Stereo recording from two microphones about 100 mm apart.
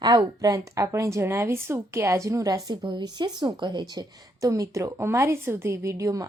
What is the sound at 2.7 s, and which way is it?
Speech, 50° right (ahead or behind).